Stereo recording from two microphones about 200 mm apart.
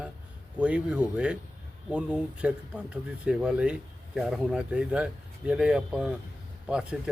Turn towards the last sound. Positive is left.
turn(degrees=-5)  # may be behind; listen again after turning